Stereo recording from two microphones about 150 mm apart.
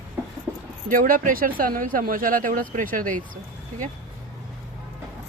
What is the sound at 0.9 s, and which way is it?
Speech, 65° right (ahead or behind).